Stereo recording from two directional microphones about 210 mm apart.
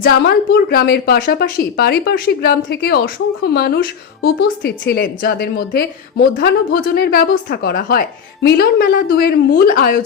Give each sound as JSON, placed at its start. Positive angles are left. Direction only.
{"t": 0.0, "sound": "a woman's voice", "side_deg": 50}